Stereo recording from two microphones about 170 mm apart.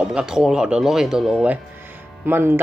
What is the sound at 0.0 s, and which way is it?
Speech, 5° right (ahead or behind).